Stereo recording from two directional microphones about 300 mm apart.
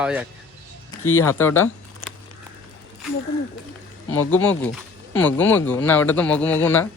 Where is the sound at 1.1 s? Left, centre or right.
Centre.